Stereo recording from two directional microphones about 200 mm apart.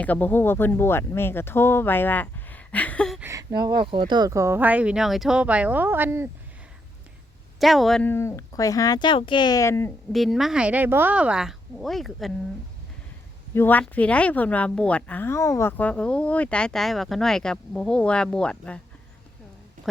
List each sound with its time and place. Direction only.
0.0 s speech: 10° left (ahead or behind)
3.2 s a sound: 15° right (ahead or behind)
3.7 s speech: 25° right (ahead or behind)
7.6 s speech: centre (ahead or behind)
10.1 s a woman's voice: centre (ahead or behind)
13.5 s speech: 10° left (ahead or behind)